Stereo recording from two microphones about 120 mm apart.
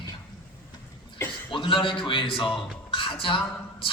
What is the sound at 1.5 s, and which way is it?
A man's voice, 45° left (ahead or behind).